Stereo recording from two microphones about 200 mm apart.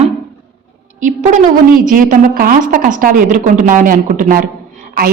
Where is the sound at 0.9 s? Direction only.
40° right (ahead or behind).